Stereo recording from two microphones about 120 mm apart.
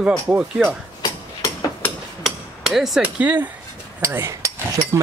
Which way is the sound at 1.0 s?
35° left (ahead or behind).